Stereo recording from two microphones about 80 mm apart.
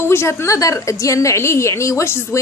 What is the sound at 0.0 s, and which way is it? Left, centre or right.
A woman's voice, left.